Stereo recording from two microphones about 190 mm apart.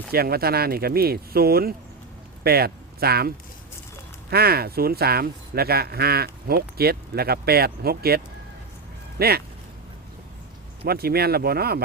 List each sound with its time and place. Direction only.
0.1 s speech: 55° right (ahead or behind)
10.8 s speech: 55° right (ahead or behind)